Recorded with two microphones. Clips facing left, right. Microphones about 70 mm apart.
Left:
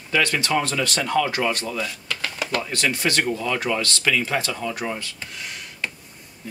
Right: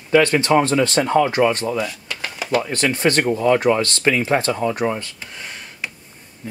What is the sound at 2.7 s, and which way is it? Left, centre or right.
Speech, right.